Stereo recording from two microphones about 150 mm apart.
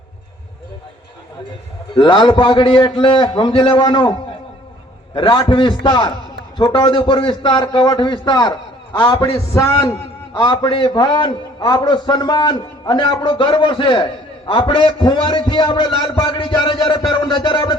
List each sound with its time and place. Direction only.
2.0 s a man's voice: 30° left (ahead or behind)
5.1 s a man's voice: 30° left (ahead or behind)
10.3 s a man's voice: 30° left (ahead or behind)